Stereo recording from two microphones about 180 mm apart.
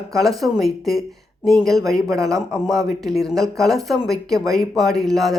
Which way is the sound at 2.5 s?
Centre (ahead or behind).